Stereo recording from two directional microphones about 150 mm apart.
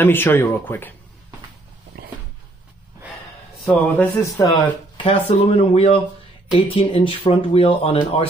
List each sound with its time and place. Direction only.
0.0 s speech: 15° left (ahead or behind)
2.0 s dog: 90° right
3.9 s speech: 10° left (ahead or behind)
4.4 s speech: 30° left (ahead or behind)